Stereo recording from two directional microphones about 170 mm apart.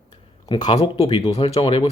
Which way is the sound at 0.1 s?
25° left (ahead or behind).